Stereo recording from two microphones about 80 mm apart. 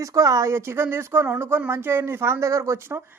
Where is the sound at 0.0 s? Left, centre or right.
Right.